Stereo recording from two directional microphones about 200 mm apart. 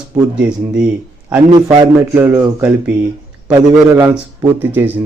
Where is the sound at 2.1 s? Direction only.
10° right (ahead or behind).